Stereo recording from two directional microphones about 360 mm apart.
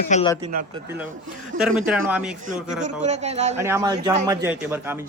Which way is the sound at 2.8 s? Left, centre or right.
Centre.